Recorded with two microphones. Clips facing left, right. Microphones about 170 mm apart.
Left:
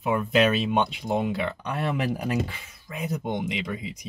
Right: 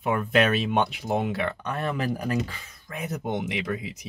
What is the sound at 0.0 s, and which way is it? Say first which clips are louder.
Speech: left 1 dB; 5° left (ahead or behind).